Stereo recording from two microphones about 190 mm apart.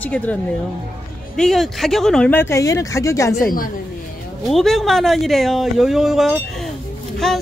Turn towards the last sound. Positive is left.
turn(degrees=0)  # may be behind; listen again after turning